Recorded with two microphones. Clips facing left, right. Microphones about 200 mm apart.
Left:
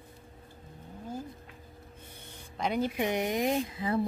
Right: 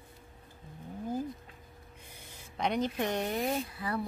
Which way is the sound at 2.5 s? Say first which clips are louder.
Left 1 dB; 5° left (ahead or behind).